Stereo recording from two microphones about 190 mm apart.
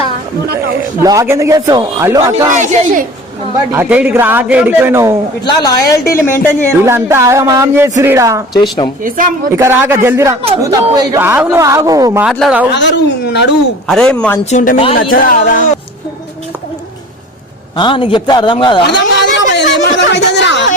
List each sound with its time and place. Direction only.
1.0 s a man's voice: 15° right (ahead or behind)
2.5 s a woman's voice: 40° right (ahead or behind)
3.7 s speech: 10° right (ahead or behind)
5.5 s speech: 20° left (ahead or behind)
6.8 s speech: 15° right (ahead or behind)
9.0 s speech: 45° right (ahead or behind)
9.6 s speech: 10° right (ahead or behind)
12.2 s speech: centre (ahead or behind)
12.7 s a woman's voice: 65° left (ahead or behind)
13.8 s speech: 5° left (ahead or behind)
14.5 s speech: 45° left (ahead or behind)
17.7 s a man's voice: 25° left (ahead or behind)
18.9 s a sound: 70° left (ahead or behind)